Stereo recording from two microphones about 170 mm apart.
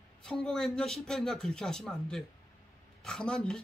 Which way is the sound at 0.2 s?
5° left (ahead or behind).